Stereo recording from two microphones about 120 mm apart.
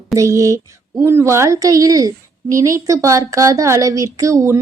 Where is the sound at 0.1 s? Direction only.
25° right (ahead or behind).